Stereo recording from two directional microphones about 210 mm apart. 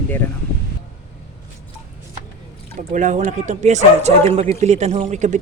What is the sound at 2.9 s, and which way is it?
Speech, 35° right (ahead or behind).